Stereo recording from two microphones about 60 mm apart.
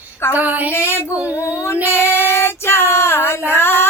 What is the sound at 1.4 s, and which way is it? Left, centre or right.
Female singing, left.